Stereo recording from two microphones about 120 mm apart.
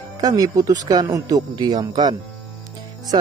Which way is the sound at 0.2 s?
30° right (ahead or behind).